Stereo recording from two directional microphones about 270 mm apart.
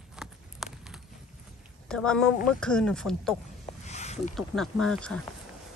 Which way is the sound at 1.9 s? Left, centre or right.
Centre.